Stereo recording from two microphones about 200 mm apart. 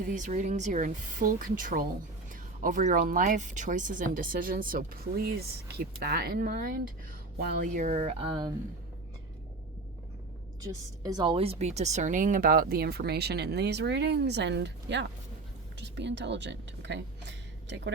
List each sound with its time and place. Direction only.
0.1 s speech: 40° right (ahead or behind); by 8.5 s 25° right (ahead or behind)
10.6 s speech: 20° right (ahead or behind); by 17.9 s 60° right (ahead or behind)